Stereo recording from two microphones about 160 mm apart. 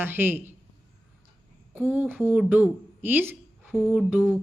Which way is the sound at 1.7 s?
10° right (ahead or behind).